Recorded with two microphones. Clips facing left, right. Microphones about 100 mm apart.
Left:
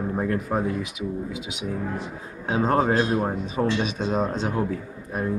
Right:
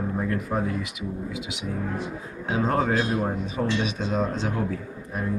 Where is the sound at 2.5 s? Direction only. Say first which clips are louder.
Left 2 dB; 30° left (ahead or behind).